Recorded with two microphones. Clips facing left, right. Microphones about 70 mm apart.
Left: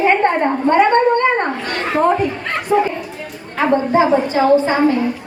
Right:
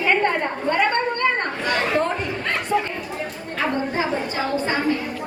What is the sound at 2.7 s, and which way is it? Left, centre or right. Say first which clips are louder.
Chatter: left 8 dB; left.